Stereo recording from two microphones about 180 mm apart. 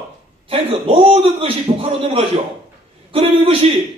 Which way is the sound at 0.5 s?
30° right (ahead or behind).